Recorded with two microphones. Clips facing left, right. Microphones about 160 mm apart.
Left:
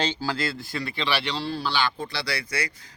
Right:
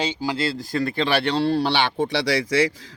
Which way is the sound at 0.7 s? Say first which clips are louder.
Right 9 dB; 45° right (ahead or behind).